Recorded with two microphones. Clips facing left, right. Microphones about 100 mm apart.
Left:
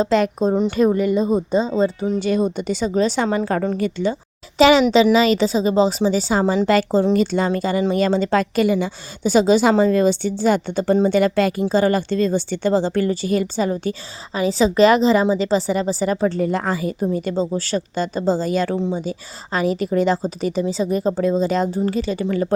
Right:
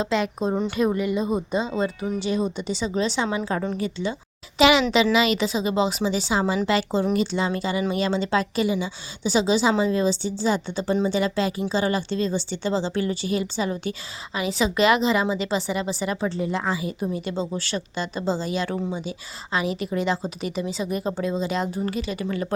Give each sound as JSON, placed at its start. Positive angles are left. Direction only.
{"t": 0.0, "sound": "a woman's voice", "side_deg": 40}
{"t": 2.1, "sound": "speech", "side_deg": 45}
{"t": 4.1, "sound": "a woman's voice", "side_deg": 35}
{"t": 14.3, "sound": "a woman's voice", "side_deg": 35}
{"t": 18.7, "sound": "speech", "side_deg": 30}
{"t": 19.0, "sound": "a woman's voice", "side_deg": 40}